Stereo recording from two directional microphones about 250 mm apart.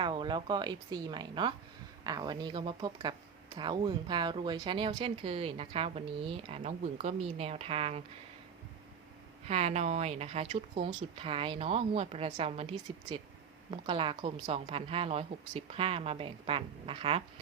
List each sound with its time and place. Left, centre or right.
0.0 s speech: centre
9.5 s speech: right